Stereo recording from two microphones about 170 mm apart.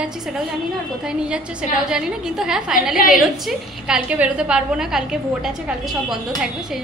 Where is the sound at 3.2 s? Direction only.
Centre (ahead or behind).